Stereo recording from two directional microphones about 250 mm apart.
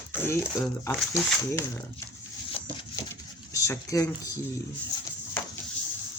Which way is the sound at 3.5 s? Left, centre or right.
Centre.